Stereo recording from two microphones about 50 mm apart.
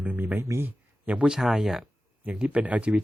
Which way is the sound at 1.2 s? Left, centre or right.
Centre.